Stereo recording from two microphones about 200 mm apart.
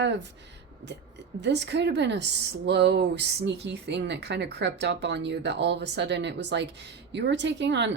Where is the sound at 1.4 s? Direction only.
60° right (ahead or behind).